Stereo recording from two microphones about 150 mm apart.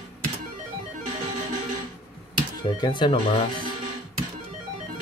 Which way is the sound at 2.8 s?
35° left (ahead or behind).